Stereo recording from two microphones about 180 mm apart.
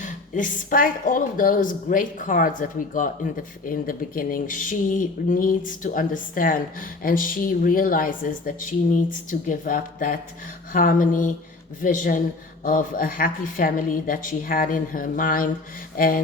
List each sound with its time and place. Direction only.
0.0 s speech: 45° left (ahead or behind)